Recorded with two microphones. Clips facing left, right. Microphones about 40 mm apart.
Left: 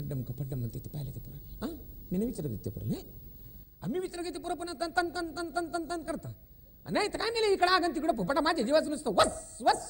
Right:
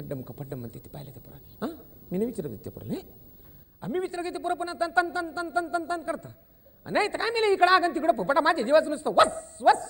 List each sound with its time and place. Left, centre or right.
0.0 s speech: right